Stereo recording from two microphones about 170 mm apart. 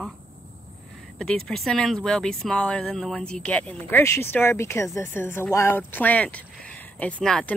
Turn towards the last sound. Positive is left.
turn(degrees=5)  # may be behind; listen again after turning